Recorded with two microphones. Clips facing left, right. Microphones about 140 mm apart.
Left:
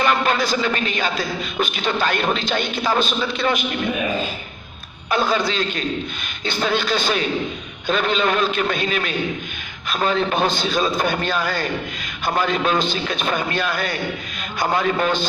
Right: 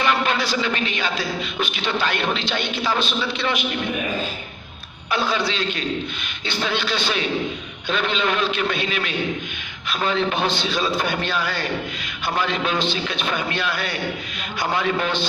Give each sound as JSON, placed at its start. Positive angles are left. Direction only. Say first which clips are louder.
{"t": 0.0, "sound": "a man's voice", "louder": "left 2 dB", "side_deg": 45}
{"t": 5.1, "sound": "a man's voice", "louder": "left 3 dB", "side_deg": 45}